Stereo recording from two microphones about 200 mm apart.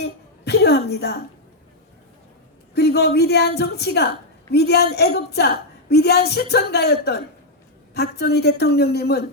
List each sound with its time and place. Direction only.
0.0 s a woman's voice: 55° left (ahead or behind)
2.7 s a woman's voice: 55° left (ahead or behind)